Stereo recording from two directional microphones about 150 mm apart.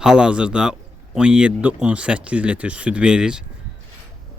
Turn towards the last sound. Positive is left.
turn(degrees=-5)  # may be behind; listen again after turning